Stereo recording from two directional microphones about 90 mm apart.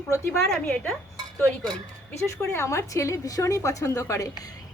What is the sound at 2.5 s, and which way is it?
A woman's voice, 30° left (ahead or behind).